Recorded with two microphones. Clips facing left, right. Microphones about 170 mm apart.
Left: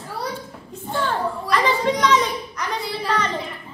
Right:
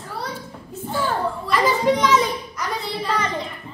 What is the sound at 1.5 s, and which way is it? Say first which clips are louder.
Children playing: right 1 dB; 5° right (ahead or behind).